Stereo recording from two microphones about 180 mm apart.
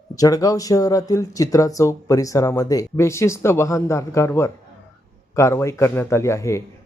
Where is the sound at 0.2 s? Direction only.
20° left (ahead or behind).